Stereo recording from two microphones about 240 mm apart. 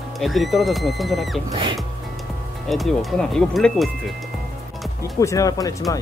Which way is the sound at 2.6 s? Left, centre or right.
Centre.